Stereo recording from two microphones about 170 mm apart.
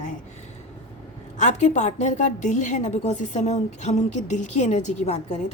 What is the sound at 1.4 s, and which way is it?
A woman's voice, 45° left (ahead or behind).